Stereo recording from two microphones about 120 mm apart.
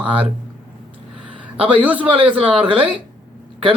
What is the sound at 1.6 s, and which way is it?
Speech, 10° right (ahead or behind).